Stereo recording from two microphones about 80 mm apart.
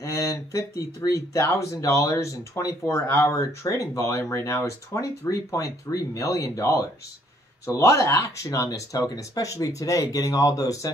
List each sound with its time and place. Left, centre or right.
0.0 s speech: left